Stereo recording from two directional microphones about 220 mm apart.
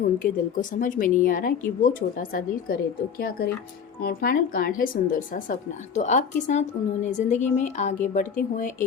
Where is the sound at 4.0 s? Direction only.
40° left (ahead or behind).